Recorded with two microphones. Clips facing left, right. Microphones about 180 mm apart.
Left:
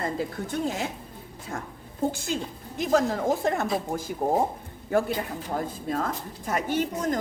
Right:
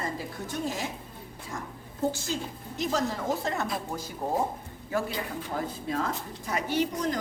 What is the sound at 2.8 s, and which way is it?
Speech, 50° left (ahead or behind).